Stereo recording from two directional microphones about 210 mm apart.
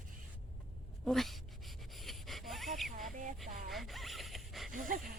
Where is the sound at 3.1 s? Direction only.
35° right (ahead or behind).